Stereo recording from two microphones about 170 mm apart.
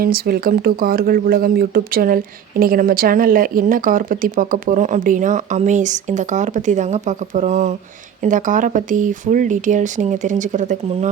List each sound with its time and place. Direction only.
0.0 s speech: 60° right (ahead or behind)